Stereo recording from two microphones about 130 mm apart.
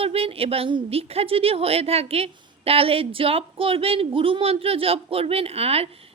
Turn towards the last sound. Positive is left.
turn(degrees=-50)  # may be behind; listen again after turning